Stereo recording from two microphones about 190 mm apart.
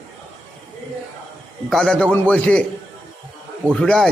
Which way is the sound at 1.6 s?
Centre (ahead or behind).